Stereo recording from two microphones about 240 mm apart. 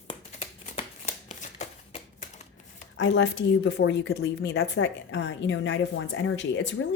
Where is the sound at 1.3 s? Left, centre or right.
Left.